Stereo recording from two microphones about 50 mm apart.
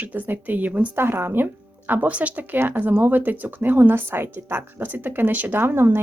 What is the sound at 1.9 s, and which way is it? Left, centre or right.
Speech, right.